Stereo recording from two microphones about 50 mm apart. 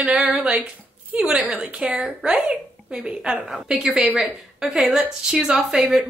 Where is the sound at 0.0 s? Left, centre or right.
Centre.